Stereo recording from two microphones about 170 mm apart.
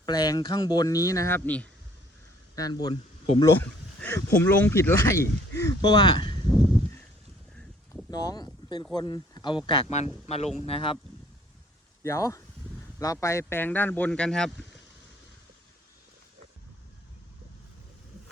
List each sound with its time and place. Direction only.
0.0 s speech: 25° left (ahead or behind)
2.6 s speech: 25° left (ahead or behind)
8.1 s speech: 25° left (ahead or behind)
12.0 s speech: 20° left (ahead or behind)